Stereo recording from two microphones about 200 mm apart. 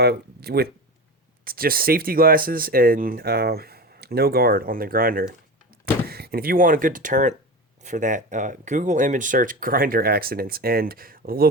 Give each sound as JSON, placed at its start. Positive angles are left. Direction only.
{"t": 0.0, "sound": "speech", "side_deg": -55}